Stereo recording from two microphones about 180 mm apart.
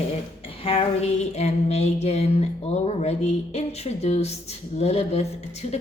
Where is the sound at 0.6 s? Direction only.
35° left (ahead or behind).